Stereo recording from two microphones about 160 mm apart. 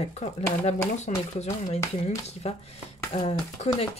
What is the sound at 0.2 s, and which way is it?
Speech, 45° left (ahead or behind).